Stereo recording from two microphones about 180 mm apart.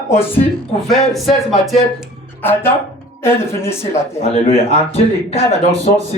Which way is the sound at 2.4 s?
10° left (ahead or behind).